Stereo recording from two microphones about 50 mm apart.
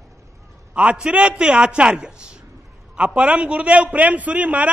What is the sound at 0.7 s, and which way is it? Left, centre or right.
A man's voice, centre.